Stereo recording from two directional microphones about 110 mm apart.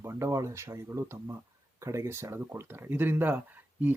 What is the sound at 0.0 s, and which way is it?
Speech, 25° right (ahead or behind).